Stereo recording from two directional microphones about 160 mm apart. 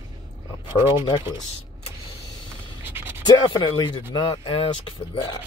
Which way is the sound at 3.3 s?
25° left (ahead or behind).